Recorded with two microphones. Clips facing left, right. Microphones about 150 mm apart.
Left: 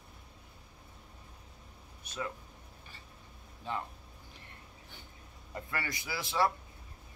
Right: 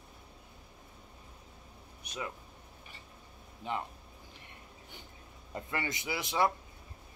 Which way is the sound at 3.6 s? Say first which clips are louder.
Right 1 dB; 20° right (ahead or behind).